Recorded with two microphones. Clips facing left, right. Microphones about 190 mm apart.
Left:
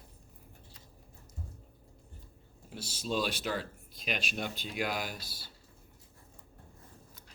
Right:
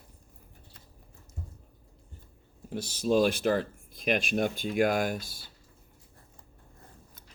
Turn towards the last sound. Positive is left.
turn(degrees=-50)  # may be behind; listen again after turning